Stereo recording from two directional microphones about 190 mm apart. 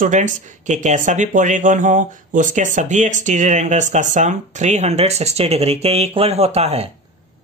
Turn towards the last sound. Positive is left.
turn(degrees=-35)  # may be behind; listen again after turning